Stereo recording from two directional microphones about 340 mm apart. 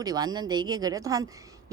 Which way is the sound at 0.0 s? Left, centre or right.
Centre.